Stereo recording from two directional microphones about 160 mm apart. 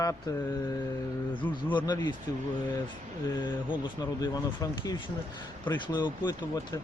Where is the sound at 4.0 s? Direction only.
25° left (ahead or behind).